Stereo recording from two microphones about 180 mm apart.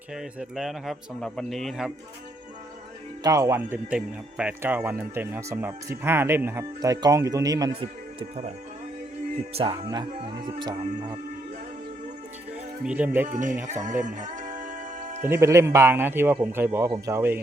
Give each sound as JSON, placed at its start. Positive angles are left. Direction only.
{"t": 0.1, "sound": "speech", "side_deg": -5}
{"t": 3.2, "sound": "speech", "side_deg": -20}
{"t": 12.8, "sound": "speech", "side_deg": -5}
{"t": 13.2, "sound": "speech", "side_deg": -45}
{"t": 13.7, "sound": "music", "side_deg": -45}
{"t": 15.3, "sound": "speech", "side_deg": -15}